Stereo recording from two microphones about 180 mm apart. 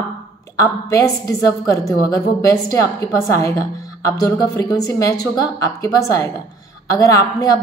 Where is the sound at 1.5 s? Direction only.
15° left (ahead or behind).